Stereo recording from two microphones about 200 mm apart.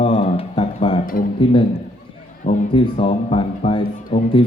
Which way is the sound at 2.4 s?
35° left (ahead or behind).